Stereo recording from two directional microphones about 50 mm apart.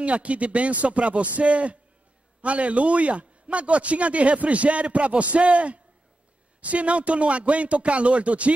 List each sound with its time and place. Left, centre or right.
0.0 s a man's voice: right